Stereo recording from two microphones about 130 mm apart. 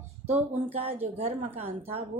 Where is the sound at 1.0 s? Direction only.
55° right (ahead or behind).